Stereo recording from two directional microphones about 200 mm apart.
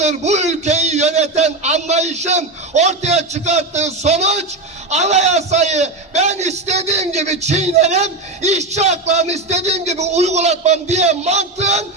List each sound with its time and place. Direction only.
0.0 s a man's voice: 35° right (ahead or behind)